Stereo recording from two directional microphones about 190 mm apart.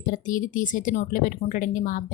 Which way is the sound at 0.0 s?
45° left (ahead or behind).